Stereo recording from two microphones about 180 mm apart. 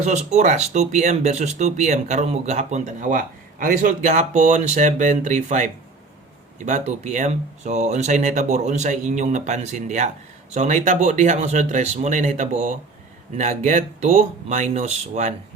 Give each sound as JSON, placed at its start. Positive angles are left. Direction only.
{"t": 0.0, "sound": "speech", "side_deg": -40}